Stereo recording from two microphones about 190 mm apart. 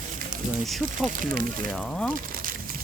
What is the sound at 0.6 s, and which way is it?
Speech, centre (ahead or behind).